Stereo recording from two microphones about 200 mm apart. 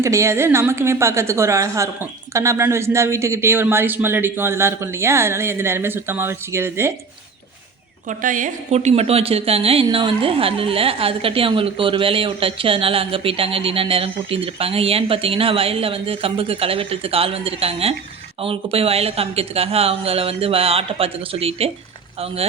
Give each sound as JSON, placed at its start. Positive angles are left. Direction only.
{"t": 0.0, "sound": "a woman's voice", "side_deg": -15}
{"t": 8.0, "sound": "a woman's voice", "side_deg": -40}